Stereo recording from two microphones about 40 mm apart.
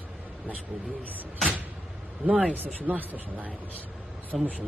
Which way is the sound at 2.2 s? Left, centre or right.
Right.